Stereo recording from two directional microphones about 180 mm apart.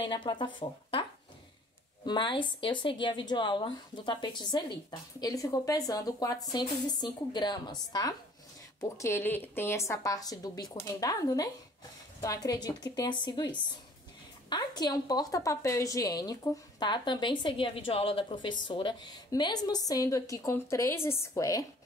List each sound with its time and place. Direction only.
0.0 s a woman's voice: 25° left (ahead or behind)
2.0 s a woman's voice: 25° left (ahead or behind)